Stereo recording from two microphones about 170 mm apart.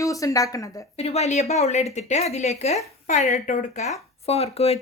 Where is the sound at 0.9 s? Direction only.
40° left (ahead or behind).